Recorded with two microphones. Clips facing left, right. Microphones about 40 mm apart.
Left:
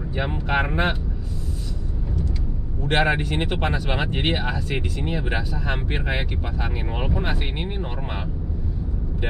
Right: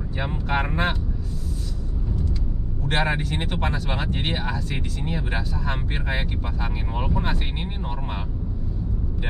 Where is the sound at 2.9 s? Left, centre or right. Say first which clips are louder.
Left 3 dB; centre.